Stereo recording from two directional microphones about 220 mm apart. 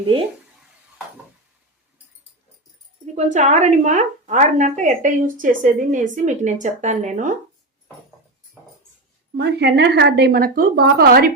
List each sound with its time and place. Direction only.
3.2 s a woman's voice: 30° right (ahead or behind)
9.3 s speech: 50° right (ahead or behind)